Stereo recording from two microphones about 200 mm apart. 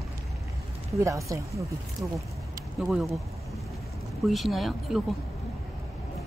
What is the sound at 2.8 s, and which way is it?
Speech, centre (ahead or behind).